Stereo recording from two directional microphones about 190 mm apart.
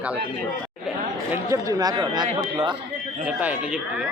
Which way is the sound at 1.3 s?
15° right (ahead or behind).